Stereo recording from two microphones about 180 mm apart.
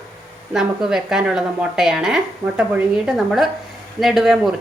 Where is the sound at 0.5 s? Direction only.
5° right (ahead or behind).